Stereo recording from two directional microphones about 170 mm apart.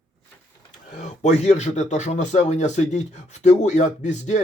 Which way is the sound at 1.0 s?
40° left (ahead or behind).